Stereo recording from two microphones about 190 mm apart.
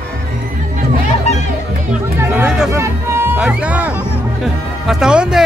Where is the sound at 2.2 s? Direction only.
5° right (ahead or behind).